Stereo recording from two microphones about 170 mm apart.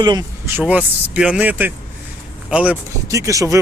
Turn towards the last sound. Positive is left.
turn(degrees=-20)  # may be behind; listen again after turning